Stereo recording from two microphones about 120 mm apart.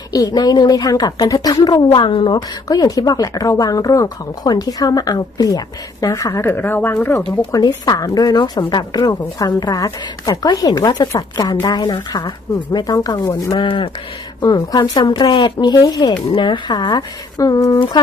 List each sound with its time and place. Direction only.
0.1 s a woman's voice: 30° left (ahead or behind); by 7.3 s 15° left (ahead or behind)
7.5 s a woman's voice: 30° left (ahead or behind)
13.6 s a woman's voice: 45° left (ahead or behind)
17.7 s a woman's voice: 40° left (ahead or behind)